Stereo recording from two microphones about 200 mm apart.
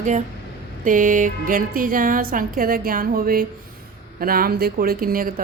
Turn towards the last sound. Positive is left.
turn(degrees=-45)  # may be behind; listen again after turning